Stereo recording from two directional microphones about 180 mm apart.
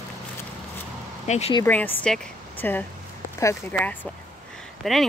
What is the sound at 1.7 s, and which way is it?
Speech, 10° left (ahead or behind).